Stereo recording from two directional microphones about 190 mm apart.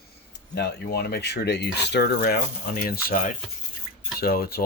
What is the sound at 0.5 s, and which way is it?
Speech, 60° left (ahead or behind).